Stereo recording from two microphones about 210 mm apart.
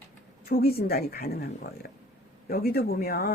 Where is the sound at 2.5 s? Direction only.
45° left (ahead or behind).